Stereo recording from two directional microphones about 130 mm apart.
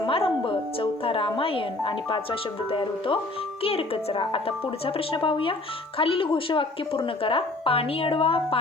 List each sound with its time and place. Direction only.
0.0 s a woman's voice: 45° left (ahead or behind)